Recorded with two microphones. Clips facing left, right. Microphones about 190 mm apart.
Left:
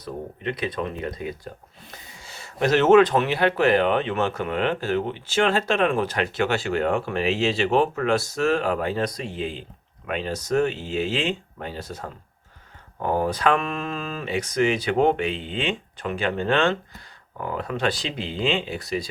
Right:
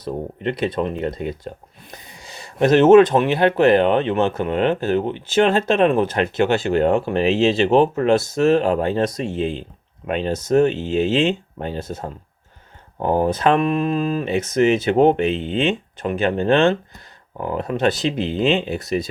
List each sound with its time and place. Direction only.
0.0 s speech: 30° right (ahead or behind)
2.1 s speech: 15° right (ahead or behind)